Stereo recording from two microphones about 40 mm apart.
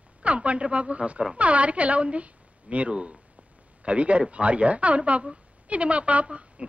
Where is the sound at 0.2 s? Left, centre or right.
Right.